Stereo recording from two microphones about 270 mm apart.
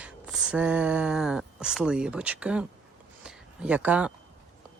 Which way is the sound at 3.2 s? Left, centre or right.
Centre.